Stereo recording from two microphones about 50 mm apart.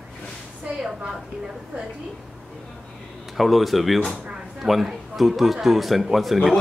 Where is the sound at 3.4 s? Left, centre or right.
Centre.